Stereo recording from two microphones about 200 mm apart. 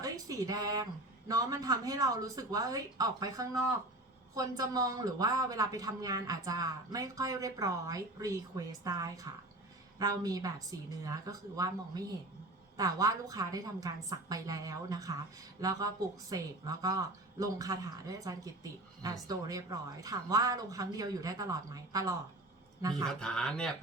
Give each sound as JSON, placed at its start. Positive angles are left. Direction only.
{"t": 0.0, "sound": "speech", "side_deg": -15}
{"t": 23.0, "sound": "a man's voice", "side_deg": 5}